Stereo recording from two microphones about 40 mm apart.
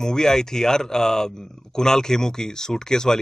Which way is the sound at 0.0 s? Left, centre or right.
Centre.